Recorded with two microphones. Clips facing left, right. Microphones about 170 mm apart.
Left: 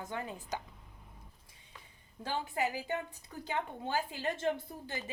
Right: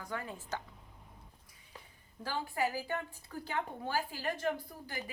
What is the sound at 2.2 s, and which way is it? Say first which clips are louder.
Speech: even; 20° left (ahead or behind).